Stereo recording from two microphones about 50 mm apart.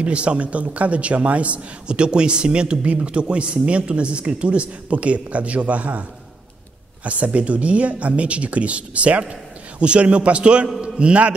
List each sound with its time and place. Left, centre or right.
0.0 s a man's voice: right
7.1 s a man's voice: right